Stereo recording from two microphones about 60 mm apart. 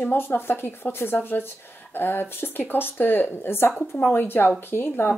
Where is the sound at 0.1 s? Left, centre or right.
Left.